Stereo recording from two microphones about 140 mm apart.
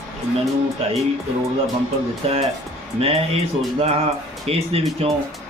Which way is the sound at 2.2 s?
45° right (ahead or behind).